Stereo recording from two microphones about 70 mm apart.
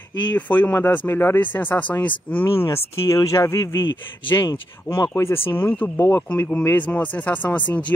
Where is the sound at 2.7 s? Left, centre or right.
Left.